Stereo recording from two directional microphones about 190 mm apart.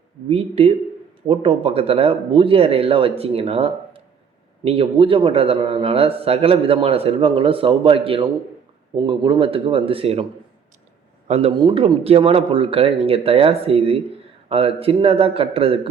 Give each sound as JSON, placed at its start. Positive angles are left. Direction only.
{"t": 0.3, "sound": "a man's voice", "side_deg": -30}
{"t": 11.3, "sound": "speech", "side_deg": -35}